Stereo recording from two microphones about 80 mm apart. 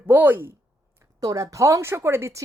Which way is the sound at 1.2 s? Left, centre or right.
Right.